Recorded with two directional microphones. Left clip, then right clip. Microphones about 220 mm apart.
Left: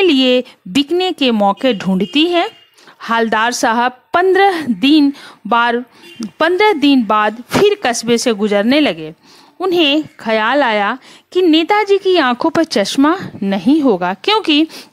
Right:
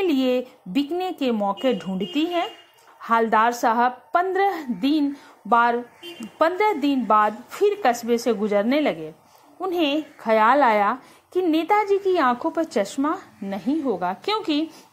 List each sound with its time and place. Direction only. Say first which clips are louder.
0.0 s a woman's voice: left 10 dB; 45° left (ahead or behind)
8.1 s a woman's voice: left 7 dB; 50° left (ahead or behind)